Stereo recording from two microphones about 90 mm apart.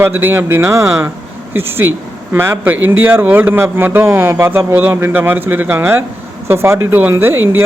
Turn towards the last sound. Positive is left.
turn(degrees=-25)  # may be behind; listen again after turning